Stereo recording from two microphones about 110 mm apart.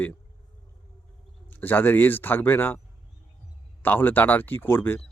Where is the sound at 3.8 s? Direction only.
15° left (ahead or behind).